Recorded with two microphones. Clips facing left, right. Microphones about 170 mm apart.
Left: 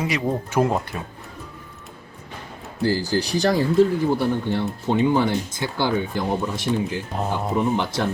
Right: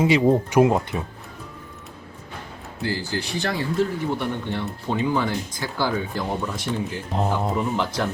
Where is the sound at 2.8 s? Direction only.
35° left (ahead or behind); by 6.2 s 20° left (ahead or behind).